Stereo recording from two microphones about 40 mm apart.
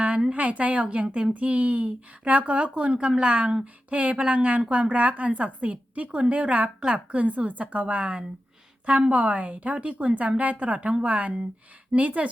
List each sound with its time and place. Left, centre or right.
0.3 s a woman's voice: right